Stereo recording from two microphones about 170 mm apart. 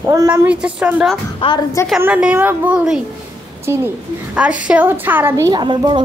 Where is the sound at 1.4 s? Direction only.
35° left (ahead or behind).